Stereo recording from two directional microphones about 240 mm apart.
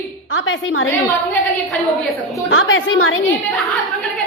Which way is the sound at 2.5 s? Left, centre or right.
Left.